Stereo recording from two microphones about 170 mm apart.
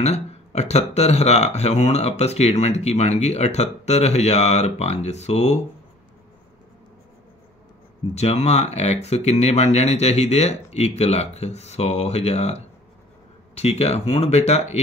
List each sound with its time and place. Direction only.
0.0 s speech: 40° left (ahead or behind)
8.1 s speech: 40° left (ahead or behind)